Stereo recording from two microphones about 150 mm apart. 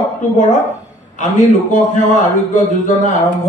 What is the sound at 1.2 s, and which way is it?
A man's voice, 55° left (ahead or behind).